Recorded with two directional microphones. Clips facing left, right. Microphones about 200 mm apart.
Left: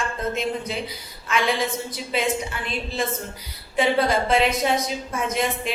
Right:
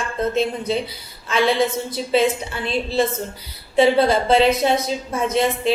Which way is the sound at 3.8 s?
30° right (ahead or behind).